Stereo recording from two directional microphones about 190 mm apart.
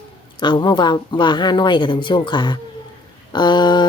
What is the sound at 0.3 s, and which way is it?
A woman's voice, 25° left (ahead or behind).